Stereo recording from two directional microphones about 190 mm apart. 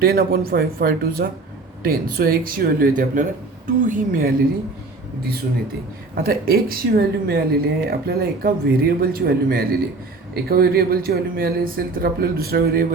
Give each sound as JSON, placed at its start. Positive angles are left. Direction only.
{"t": 0.0, "sound": "speech", "side_deg": -55}
{"t": 6.1, "sound": "speech", "side_deg": -50}